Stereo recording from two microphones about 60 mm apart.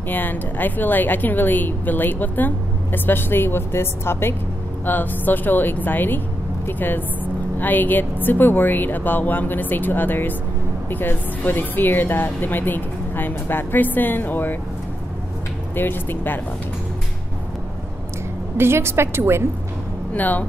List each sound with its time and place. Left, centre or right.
0.1 s a woman's voice: left
4.8 s a woman's voice: left
7.5 s a woman's voice: left
15.7 s a woman's voice: left
18.6 s a woman's voice: right
20.2 s speech: left